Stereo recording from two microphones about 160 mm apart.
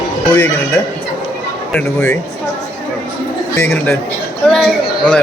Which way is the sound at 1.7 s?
10° left (ahead or behind).